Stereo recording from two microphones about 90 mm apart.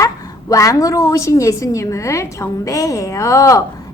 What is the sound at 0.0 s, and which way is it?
Speech, 40° left (ahead or behind).